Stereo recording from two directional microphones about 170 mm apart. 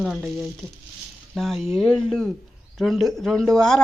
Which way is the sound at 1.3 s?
Centre (ahead or behind).